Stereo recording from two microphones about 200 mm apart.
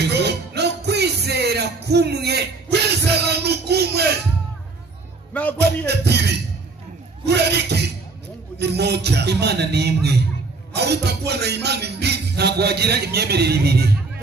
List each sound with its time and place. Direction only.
0.0 s music: 55° right (ahead or behind)
5.3 s a man's voice: 5° left (ahead or behind)
5.9 s speech: 55° right (ahead or behind)